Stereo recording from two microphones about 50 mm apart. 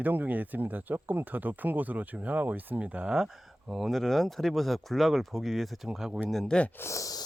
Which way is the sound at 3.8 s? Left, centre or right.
Centre.